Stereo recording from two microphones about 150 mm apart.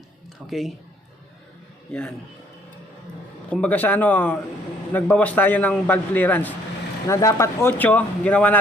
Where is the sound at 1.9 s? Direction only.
5° left (ahead or behind).